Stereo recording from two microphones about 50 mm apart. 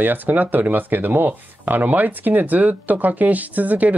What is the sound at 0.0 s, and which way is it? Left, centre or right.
Speech, right.